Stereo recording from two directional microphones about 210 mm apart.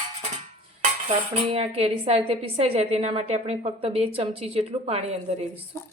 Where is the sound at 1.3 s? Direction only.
30° right (ahead or behind).